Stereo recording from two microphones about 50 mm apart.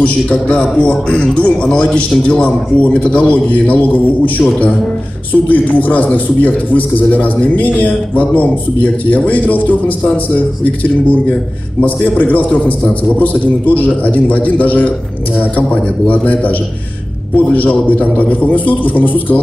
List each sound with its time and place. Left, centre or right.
0.0 s a man's voice: left